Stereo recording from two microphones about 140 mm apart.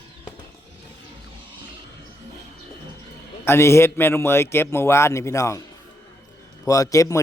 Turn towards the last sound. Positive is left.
turn(degrees=25)  # may be behind; listen again after turning